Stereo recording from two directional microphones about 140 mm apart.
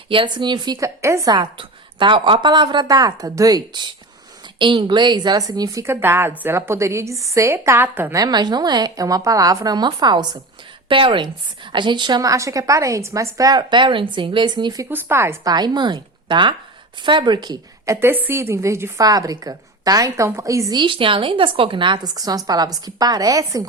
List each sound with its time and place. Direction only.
0.1 s a woman's voice: 35° right (ahead or behind); by 8.2 s 15° right (ahead or behind)
8.2 s a woman's voice: 30° right (ahead or behind)
14.8 s speech: 15° right (ahead or behind)
15.5 s a woman's voice: 30° right (ahead or behind)